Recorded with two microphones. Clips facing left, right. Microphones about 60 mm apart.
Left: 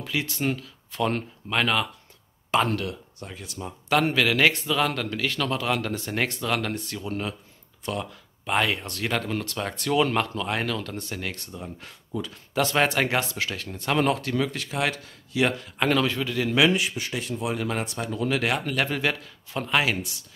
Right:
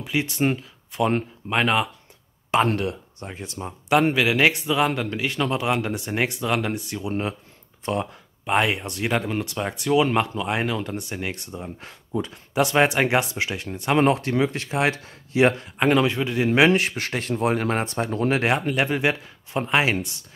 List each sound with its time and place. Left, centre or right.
0.0 s speech: right
3.9 s a man's voice: centre
16.4 s speech: right
18.4 s speech: right